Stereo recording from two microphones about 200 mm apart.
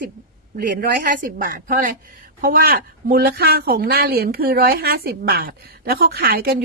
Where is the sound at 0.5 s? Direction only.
45° right (ahead or behind).